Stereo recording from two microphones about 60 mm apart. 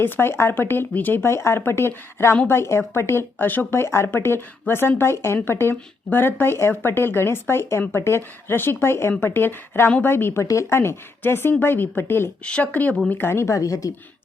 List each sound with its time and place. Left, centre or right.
0.0 s speech: left
3.3 s speech: left
3.8 s speech: left
10.4 s speech: left
10.7 s speech: left
12.7 s speech: left
13.1 s speech: left
13.4 s speech: left